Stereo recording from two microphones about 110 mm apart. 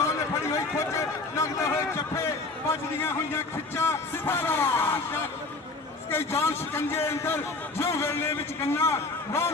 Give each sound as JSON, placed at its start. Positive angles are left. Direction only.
{"t": 0.0, "sound": "a man's voice", "side_deg": 25}